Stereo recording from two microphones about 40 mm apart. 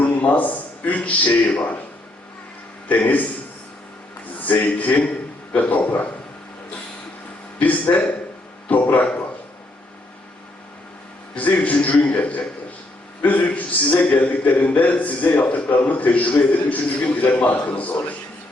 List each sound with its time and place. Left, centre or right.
0.0 s a man's voice: left
3.0 s a man's voice: left
4.4 s a man's voice: left
7.6 s a man's voice: left
11.3 s a man's voice: left